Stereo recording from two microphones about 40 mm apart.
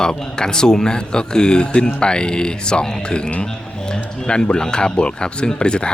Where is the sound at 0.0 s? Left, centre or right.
Centre.